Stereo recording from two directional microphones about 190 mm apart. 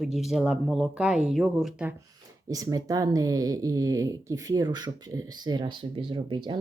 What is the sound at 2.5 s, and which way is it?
Speech, 20° right (ahead or behind).